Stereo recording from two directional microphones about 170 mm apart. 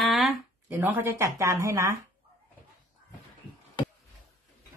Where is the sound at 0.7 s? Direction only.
10° right (ahead or behind).